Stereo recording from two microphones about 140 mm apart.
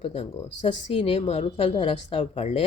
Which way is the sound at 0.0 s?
45° left (ahead or behind).